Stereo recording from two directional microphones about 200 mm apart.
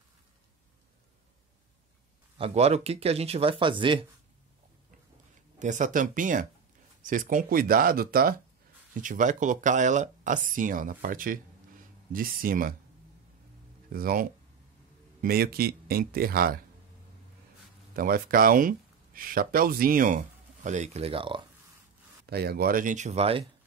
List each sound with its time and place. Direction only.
2.3 s speech: 30° right (ahead or behind)
5.6 s speech: 40° right (ahead or behind)
13.9 s speech: 45° right (ahead or behind)
17.9 s speech: 45° right (ahead or behind); by 21.4 s 25° right (ahead or behind)
22.2 s speech: 50° right (ahead or behind); by 23.4 s 30° right (ahead or behind)